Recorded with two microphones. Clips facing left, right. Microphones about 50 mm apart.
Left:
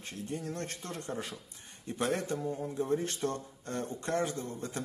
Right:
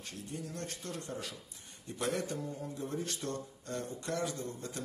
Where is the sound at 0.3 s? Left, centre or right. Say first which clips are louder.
Left 4 dB; left.